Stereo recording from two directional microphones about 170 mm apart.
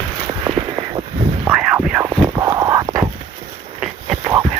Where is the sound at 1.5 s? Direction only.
5° right (ahead or behind).